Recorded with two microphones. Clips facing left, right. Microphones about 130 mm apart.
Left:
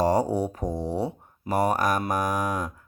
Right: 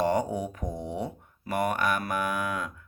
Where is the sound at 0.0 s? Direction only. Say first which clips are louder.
Left 4 dB; 35° left (ahead or behind).